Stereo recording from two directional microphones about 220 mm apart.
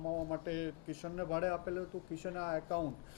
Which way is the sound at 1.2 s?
20° left (ahead or behind).